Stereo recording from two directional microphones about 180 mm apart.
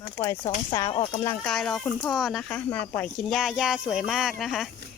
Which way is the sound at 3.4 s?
5° right (ahead or behind).